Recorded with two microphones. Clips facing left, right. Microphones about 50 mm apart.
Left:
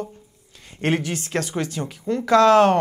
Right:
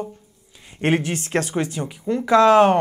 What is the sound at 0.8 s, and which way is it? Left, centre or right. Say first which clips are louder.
Speech: right 2 dB; right.